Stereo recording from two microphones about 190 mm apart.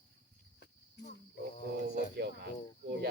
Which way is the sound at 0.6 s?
65° left (ahead or behind).